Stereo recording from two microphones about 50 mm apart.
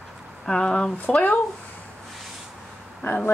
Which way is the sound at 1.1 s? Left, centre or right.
Left.